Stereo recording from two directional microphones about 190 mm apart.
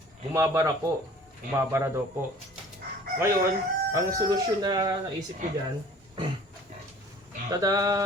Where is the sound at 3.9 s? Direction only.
15° right (ahead or behind).